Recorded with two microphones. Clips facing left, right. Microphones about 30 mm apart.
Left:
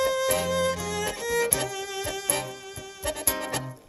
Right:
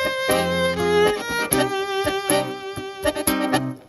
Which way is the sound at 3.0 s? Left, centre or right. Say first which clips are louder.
Right 9 dB; right.